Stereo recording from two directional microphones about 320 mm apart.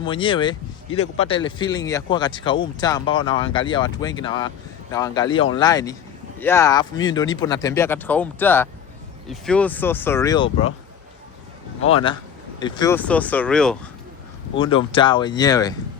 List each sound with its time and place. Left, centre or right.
0.0 s speech: centre
0.9 s a man's voice: left
1.2 s speech: centre
11.9 s speech: centre
14.6 s speech: centre